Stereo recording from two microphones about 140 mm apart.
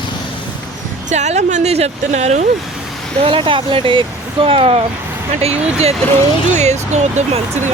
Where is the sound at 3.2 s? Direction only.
40° right (ahead or behind).